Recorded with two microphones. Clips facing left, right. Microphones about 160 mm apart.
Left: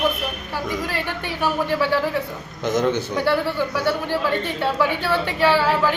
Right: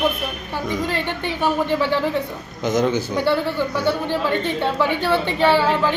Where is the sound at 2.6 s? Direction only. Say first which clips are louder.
Right 1 dB; centre (ahead or behind).